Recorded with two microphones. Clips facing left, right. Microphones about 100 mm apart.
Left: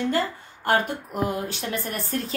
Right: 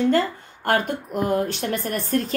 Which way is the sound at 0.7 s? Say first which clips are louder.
Right 1 dB; 45° right (ahead or behind).